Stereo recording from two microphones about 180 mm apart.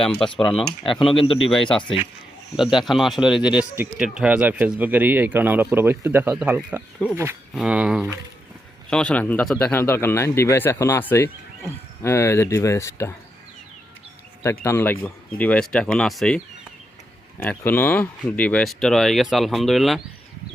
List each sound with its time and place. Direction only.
1.0 s speech: 30° left (ahead or behind)
1.5 s a man's voice: centre (ahead or behind)
14.4 s speech: 15° left (ahead or behind)
17.6 s speech: 10° left (ahead or behind)